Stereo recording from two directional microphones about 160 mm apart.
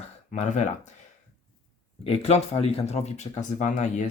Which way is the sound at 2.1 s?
40° left (ahead or behind).